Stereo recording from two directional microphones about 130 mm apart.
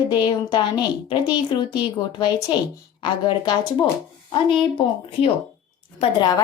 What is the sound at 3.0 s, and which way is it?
A woman's voice, 35° left (ahead or behind).